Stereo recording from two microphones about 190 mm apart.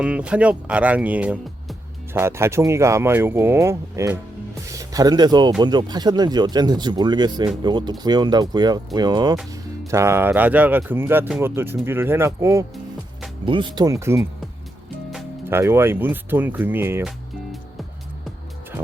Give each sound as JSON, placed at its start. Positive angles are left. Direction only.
{"t": 0.0, "sound": "speech", "side_deg": -5}
{"t": 13.4, "sound": "speech", "side_deg": -25}
{"t": 15.4, "sound": "speech", "side_deg": -10}